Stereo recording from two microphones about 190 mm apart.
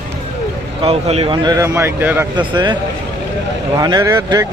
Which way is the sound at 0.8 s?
30° right (ahead or behind).